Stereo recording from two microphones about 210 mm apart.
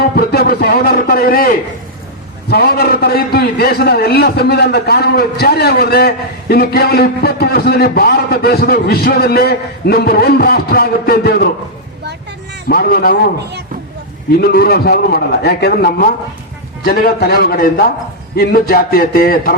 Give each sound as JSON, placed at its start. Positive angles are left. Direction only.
{"t": 0.0, "sound": "a man's voice", "side_deg": 50}
{"t": 12.6, "sound": "a man's voice", "side_deg": 45}
{"t": 14.4, "sound": "a man's voice", "side_deg": 45}